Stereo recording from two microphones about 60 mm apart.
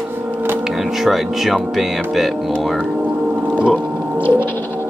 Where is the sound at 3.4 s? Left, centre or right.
Right.